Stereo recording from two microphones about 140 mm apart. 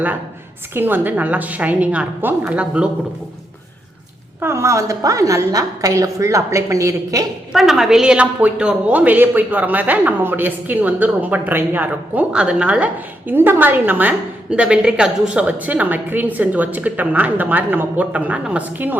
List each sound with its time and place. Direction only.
0.7 s a woman's voice: 15° right (ahead or behind)
4.4 s a woman's voice: 20° right (ahead or behind)
7.5 s a woman's voice: centre (ahead or behind)